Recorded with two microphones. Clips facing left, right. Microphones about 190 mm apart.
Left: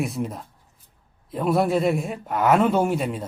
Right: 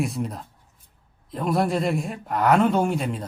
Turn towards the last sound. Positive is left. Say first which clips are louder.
# left 1 dB
turn(degrees=5)  # may be behind; listen again after turning